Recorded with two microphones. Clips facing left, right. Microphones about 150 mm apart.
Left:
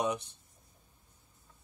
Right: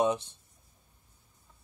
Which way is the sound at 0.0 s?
25° right (ahead or behind).